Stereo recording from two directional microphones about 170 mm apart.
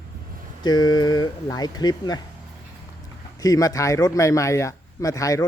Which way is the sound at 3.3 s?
20° left (ahead or behind).